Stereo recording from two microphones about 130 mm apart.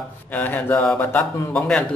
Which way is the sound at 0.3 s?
15° left (ahead or behind).